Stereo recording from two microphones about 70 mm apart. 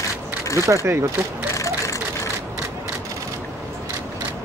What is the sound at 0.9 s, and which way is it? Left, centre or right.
Speech, right.